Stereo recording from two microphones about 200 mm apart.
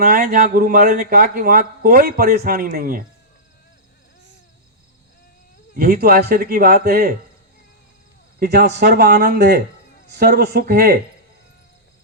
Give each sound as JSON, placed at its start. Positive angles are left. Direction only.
{"t": 0.0, "sound": "a man's voice", "side_deg": -50}
{"t": 5.7, "sound": "a man's voice", "side_deg": -50}
{"t": 8.4, "sound": "a man's voice", "side_deg": -55}